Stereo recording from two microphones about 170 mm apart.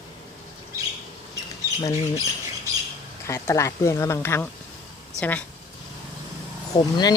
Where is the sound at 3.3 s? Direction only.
15° left (ahead or behind).